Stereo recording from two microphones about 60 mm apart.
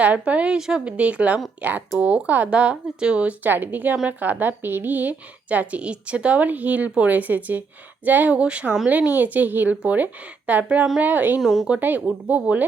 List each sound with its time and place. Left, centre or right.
0.0 s a woman's voice: right
11.3 s speech: centre
11.8 s a woman's voice: right